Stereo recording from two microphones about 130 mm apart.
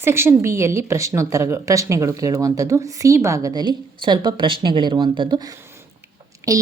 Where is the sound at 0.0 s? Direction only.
20° right (ahead or behind).